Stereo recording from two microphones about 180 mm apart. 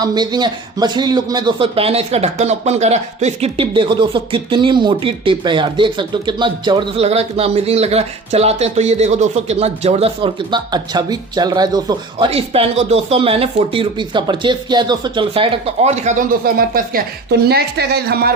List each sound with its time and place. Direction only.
0.0 s speech: 25° right (ahead or behind)
12.3 s speech: 35° right (ahead or behind); by 18.3 s 60° right (ahead or behind)